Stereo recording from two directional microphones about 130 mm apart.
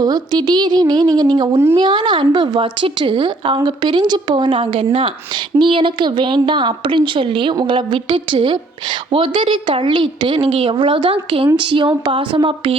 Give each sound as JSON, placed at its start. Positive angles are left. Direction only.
{"t": 0.0, "sound": "a woman's voice", "side_deg": -30}